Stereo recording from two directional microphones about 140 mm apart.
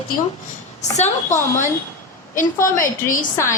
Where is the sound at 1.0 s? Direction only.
60° left (ahead or behind).